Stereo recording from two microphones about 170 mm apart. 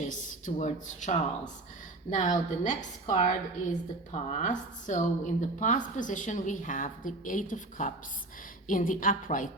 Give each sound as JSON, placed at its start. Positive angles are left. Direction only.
{"t": 0.0, "sound": "speech", "side_deg": 50}